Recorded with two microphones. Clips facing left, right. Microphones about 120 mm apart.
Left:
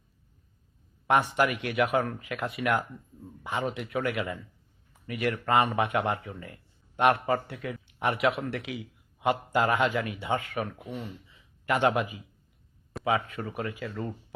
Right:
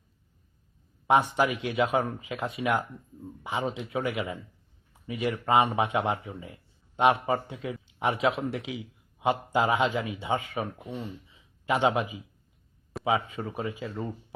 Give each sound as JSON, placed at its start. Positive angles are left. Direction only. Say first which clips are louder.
{"t": 1.0, "sound": "speech", "louder": "right 1 dB", "side_deg": -15}
{"t": 12.9, "sound": "a sound", "louder": "right 1 dB", "side_deg": 0}
{"t": 13.6, "sound": "speech", "louder": "even", "side_deg": -20}